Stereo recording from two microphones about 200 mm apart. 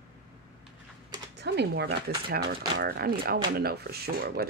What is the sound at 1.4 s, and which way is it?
Speech, 55° right (ahead or behind).